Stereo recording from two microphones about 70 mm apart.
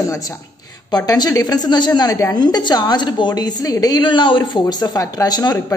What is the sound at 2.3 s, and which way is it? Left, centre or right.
A woman's voice, left.